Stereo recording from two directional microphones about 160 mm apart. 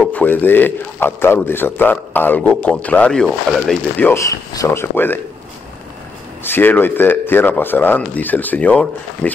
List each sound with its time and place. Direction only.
0.0 s a man's voice: 10° left (ahead or behind)
4.1 s a man's voice: 20° left (ahead or behind)
6.4 s a man's voice: 15° left (ahead or behind)